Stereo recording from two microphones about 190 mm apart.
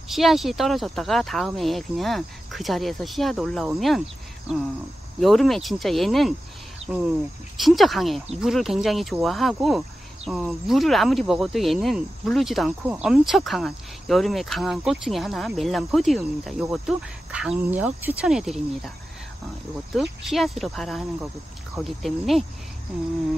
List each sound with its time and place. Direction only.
0.1 s cricket: centre (ahead or behind)
5.2 s cricket: centre (ahead or behind)
6.8 s a sound: 30° right (ahead or behind)
7.5 s cricket: centre (ahead or behind)
19.9 s cricket: centre (ahead or behind)